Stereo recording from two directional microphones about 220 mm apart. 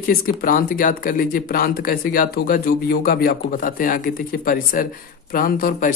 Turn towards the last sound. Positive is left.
turn(degrees=40)  # may be behind; listen again after turning